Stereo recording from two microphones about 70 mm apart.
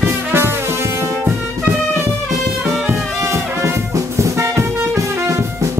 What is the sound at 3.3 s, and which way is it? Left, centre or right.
Music, right.